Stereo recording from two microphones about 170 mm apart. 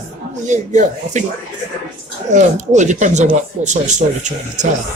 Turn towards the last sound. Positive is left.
turn(degrees=-45)  # may be behind; listen again after turning